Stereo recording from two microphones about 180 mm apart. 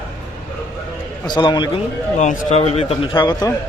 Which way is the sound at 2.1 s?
40° left (ahead or behind).